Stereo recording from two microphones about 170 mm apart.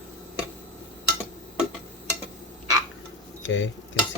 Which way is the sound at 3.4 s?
90° left.